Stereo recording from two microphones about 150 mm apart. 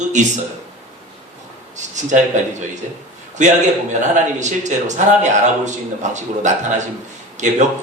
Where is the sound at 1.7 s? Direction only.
55° right (ahead or behind).